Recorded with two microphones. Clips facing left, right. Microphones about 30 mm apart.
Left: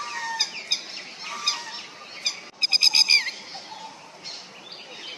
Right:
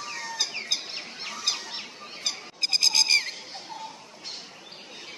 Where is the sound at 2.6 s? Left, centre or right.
Left.